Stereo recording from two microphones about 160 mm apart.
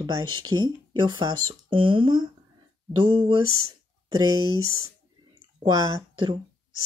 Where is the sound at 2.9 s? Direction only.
30° right (ahead or behind).